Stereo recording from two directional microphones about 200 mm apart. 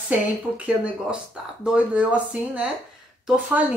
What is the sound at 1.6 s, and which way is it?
Speech, 5° right (ahead or behind).